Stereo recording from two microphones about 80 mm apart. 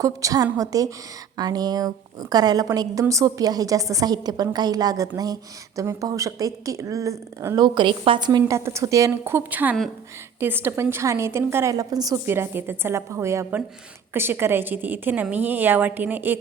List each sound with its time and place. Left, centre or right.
0.0 s a woman's voice: right
7.6 s a woman's voice: right
8.4 s a woman's voice: right
9.5 s a woman's voice: centre
11.7 s a woman's voice: right
12.2 s a woman's voice: right